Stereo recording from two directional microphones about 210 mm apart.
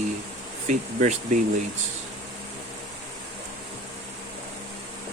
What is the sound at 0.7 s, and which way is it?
Speech, 35° right (ahead or behind).